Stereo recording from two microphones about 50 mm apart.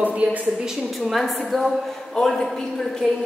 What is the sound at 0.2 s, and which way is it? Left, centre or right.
Speech, right.